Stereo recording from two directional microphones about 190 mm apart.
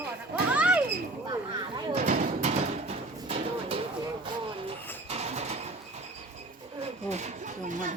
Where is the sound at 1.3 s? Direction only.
20° right (ahead or behind).